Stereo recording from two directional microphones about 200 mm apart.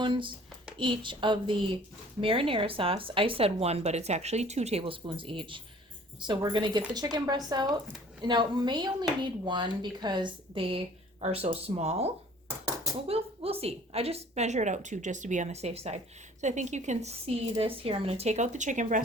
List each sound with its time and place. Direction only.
0.0 s a woman's voice: 25° right (ahead or behind); by 19.0 s 40° right (ahead or behind)